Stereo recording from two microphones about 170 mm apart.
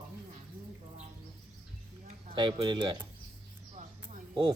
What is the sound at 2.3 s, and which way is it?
Speech, 25° right (ahead or behind).